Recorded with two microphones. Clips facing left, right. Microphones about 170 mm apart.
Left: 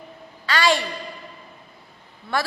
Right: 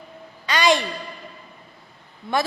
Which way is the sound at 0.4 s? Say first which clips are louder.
Right 1 dB; 20° right (ahead or behind).